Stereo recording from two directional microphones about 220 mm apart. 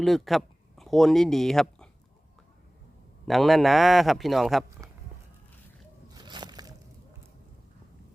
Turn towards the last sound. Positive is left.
turn(degrees=-20)  # may be behind; listen again after turning